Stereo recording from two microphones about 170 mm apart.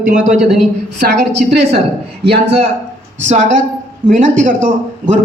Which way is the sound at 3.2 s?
45° right (ahead or behind).